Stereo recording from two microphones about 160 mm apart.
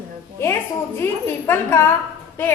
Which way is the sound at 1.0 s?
15° left (ahead or behind).